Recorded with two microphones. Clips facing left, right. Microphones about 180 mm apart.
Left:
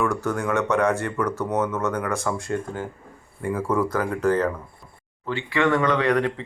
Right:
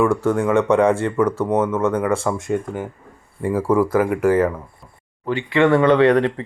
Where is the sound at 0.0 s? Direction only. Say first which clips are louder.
Right 7 dB; 30° right (ahead or behind).